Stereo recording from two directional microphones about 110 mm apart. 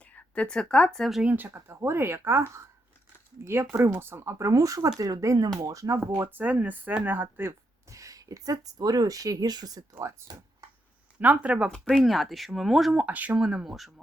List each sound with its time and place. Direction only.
0.0 s speech: 15° left (ahead or behind)
1.2 s speech: 15° right (ahead or behind)
6.2 s speech: 15° right (ahead or behind); by 9.8 s 35° right (ahead or behind)
9.9 s speech: 25° right (ahead or behind)
11.2 s speech: 15° right (ahead or behind)
11.7 s speech: centre (ahead or behind)